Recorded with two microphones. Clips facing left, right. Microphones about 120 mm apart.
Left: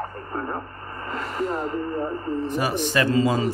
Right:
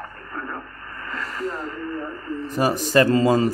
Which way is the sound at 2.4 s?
40° right (ahead or behind).